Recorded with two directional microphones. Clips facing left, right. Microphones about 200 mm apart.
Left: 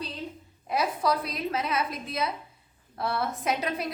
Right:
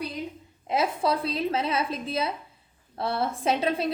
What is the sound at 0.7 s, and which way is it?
A woman's voice, 25° right (ahead or behind).